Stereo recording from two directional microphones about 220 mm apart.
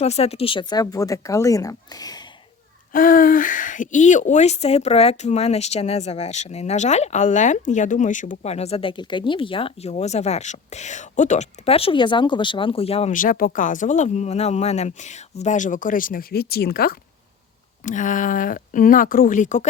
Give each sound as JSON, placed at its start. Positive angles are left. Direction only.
{"t": 0.0, "sound": "speech", "side_deg": 30}
{"t": 2.9, "sound": "speech", "side_deg": 40}